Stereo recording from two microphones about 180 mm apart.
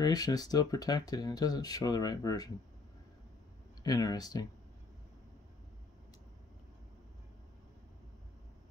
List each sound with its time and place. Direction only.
0.0 s speech: 20° left (ahead or behind)
3.8 s speech: 20° left (ahead or behind)